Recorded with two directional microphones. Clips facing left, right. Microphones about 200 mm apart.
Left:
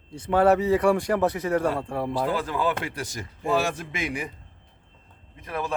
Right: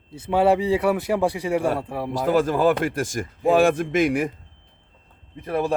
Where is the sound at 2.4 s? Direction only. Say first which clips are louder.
Right 8 dB; 45° right (ahead or behind).